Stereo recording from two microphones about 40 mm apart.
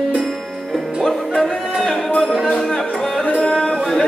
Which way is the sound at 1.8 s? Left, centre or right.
Centre.